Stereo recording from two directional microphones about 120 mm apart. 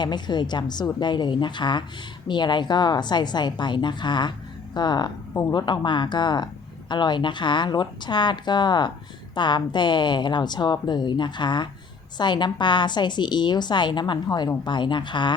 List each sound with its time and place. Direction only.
0.0 s speech: 40° left (ahead or behind)
5.3 s speech: 25° left (ahead or behind)
5.5 s speech: 40° left (ahead or behind)